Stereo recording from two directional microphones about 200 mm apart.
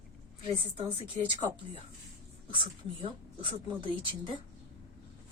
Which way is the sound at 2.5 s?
25° right (ahead or behind).